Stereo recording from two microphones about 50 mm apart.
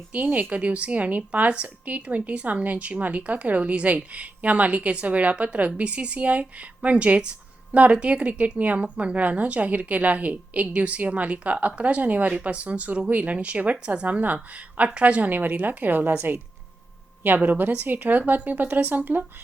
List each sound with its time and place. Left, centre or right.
0.1 s a woman's voice: right
17.2 s a woman's voice: right